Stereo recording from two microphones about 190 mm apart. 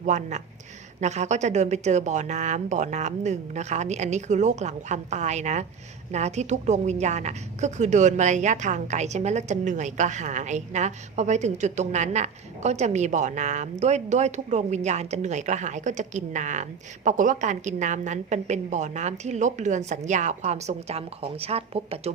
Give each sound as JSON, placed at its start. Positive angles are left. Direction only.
{"t": 0.0, "sound": "a woman's voice", "side_deg": -40}